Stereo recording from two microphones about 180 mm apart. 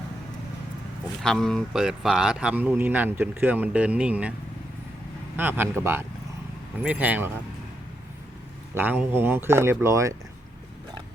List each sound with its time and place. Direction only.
1.2 s speech: centre (ahead or behind)
5.4 s speech: 10° right (ahead or behind)
8.7 s speech: 10° right (ahead or behind)